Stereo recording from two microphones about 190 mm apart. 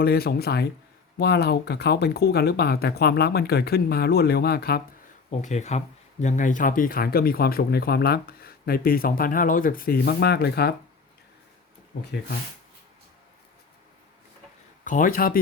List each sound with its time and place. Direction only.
0.0 s speech: 55° left (ahead or behind)
5.3 s speech: 40° left (ahead or behind); by 10.8 s 55° left (ahead or behind)
14.8 s speech: 45° left (ahead or behind)